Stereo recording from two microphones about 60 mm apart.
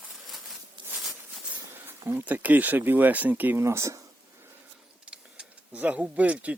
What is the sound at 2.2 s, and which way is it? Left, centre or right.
Speech, right.